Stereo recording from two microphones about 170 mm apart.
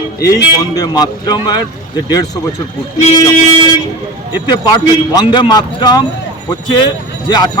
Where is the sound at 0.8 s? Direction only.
20° left (ahead or behind).